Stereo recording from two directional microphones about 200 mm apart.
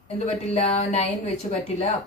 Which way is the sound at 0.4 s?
30° left (ahead or behind).